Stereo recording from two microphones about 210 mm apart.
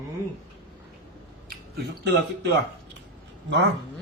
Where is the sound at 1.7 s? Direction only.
55° right (ahead or behind).